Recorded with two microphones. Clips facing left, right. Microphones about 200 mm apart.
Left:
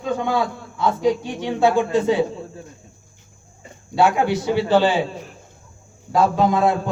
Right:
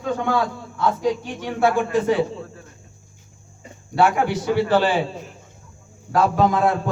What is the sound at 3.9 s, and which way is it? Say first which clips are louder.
A man's voice: left 1 dB; 15° left (ahead or behind).